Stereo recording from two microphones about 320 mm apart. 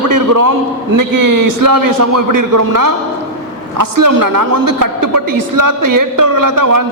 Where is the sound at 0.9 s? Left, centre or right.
Right.